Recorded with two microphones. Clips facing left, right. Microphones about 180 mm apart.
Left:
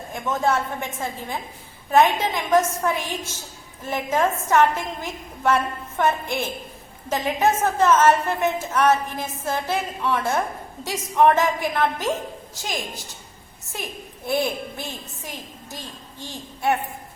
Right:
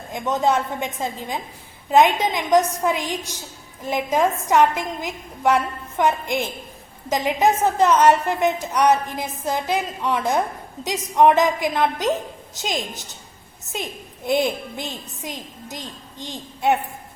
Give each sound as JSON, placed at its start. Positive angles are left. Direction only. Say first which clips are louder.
{"t": 0.1, "sound": "a woman's voice", "louder": "right 2 dB", "side_deg": -20}